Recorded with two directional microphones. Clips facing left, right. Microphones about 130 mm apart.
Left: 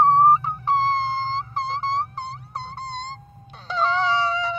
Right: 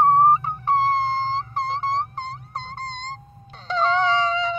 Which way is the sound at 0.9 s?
55° right (ahead or behind).